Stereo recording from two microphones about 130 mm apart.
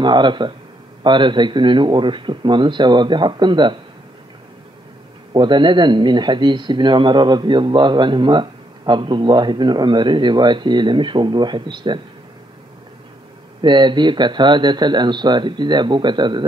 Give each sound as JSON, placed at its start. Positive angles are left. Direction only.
{"t": 0.0, "sound": "a man's voice", "side_deg": -35}
{"t": 5.3, "sound": "a man's voice", "side_deg": -35}
{"t": 13.6, "sound": "a man's voice", "side_deg": -35}